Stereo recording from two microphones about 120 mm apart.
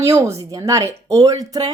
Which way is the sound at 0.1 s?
25° right (ahead or behind).